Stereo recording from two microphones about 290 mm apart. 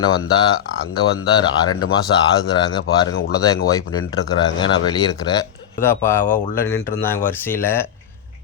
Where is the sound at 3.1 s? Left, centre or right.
Left.